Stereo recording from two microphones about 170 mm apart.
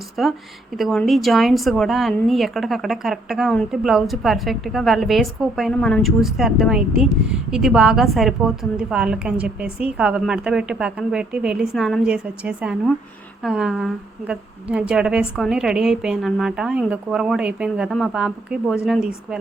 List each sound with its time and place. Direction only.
0.2 s a woman's voice: centre (ahead or behind)